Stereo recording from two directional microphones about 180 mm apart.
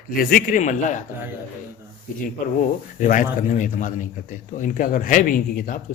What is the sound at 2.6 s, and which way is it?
Speech, 45° left (ahead or behind).